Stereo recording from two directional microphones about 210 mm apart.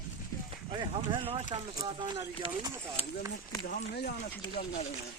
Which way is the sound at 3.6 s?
50° left (ahead or behind).